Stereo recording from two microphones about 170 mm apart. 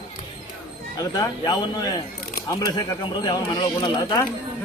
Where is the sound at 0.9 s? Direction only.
20° left (ahead or behind).